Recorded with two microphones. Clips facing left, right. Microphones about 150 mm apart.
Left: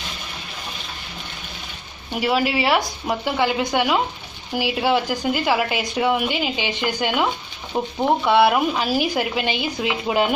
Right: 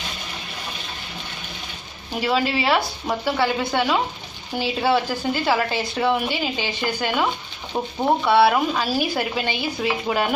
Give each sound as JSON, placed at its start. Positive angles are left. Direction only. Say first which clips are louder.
{"t": 2.1, "sound": "a woman's voice", "louder": "left 1 dB", "side_deg": 10}